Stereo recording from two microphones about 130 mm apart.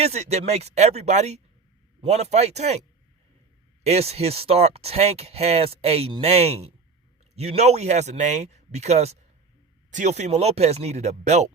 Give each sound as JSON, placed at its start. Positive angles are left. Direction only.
{"t": 0.0, "sound": "speech", "side_deg": -55}
{"t": 3.8, "sound": "speech", "side_deg": -55}